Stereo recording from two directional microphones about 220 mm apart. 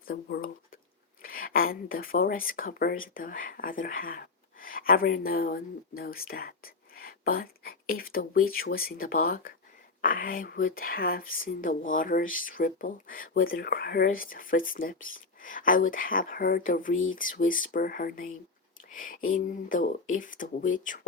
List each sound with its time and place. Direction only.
0.1 s speech: 45° left (ahead or behind)
18.9 s a sound: 40° left (ahead or behind)
19.3 s speech: 40° left (ahead or behind)